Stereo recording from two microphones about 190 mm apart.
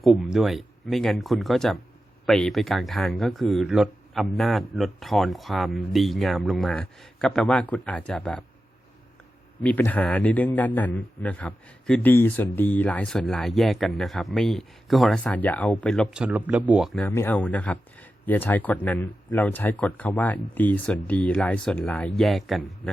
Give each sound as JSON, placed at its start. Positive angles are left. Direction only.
{"t": 0.0, "sound": "a man's voice", "side_deg": 0}
{"t": 9.6, "sound": "a man's voice", "side_deg": 10}